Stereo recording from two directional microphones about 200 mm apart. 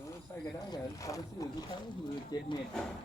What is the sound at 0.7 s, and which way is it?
A woman's voice, 15° left (ahead or behind).